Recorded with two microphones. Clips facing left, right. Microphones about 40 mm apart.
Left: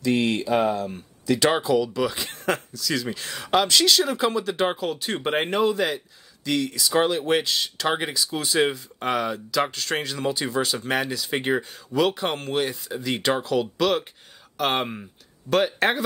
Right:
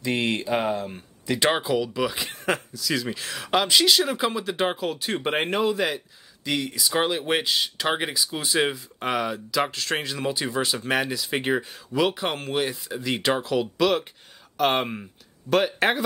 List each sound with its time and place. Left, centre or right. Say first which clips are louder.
0.0 s speech: left 3 dB; right; by 16.0 s centre